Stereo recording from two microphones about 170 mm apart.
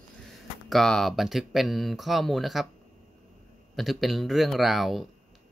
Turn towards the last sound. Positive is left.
turn(degrees=0)  # may be behind; listen again after turning